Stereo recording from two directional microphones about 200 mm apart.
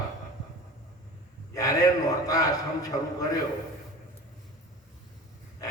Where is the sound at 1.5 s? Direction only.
15° left (ahead or behind).